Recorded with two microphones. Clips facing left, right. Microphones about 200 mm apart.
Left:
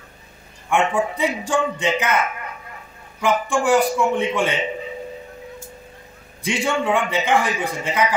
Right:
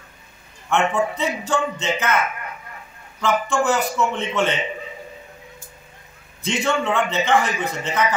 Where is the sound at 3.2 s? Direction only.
15° left (ahead or behind).